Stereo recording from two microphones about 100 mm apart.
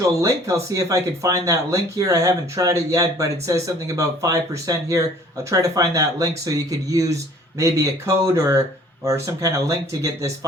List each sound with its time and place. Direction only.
0.0 s speech: 30° right (ahead or behind)